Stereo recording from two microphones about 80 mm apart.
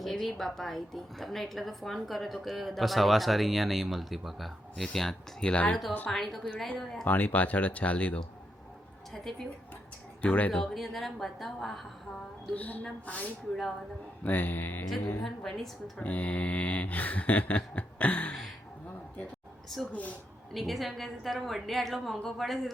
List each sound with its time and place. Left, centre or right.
0.0 s a woman's voice: centre
6.1 s a woman's voice: centre
7.0 s speech: left
10.2 s speech: centre
10.6 s a woman's voice: centre
12.5 s mantra: centre
12.8 s speech: centre
14.3 s mantra: left
15.2 s a woman's voice: centre
16.0 s mantra: centre
17.7 s a sound: centre
19.9 s mantra: centre
20.5 s a woman's voice: centre